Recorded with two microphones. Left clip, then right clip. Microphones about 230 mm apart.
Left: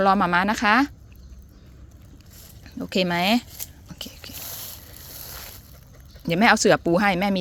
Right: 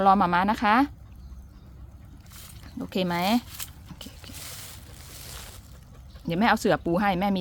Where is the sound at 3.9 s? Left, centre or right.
Centre.